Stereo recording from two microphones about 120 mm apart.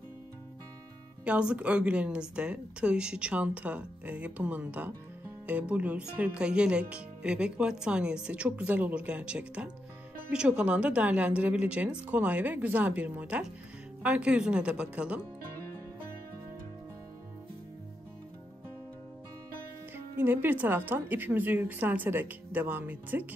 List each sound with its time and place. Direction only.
1.2 s speech: 10° right (ahead or behind)
20.2 s speech: 15° right (ahead or behind)